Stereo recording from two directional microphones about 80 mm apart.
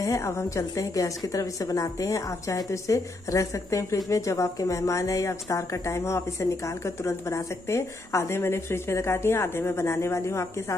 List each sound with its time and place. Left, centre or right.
0.0 s a woman's voice: left